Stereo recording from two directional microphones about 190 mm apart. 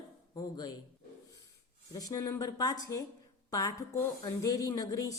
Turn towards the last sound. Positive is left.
turn(degrees=20)  # may be behind; listen again after turning